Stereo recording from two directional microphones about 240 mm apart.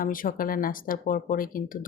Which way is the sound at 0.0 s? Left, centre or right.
Left.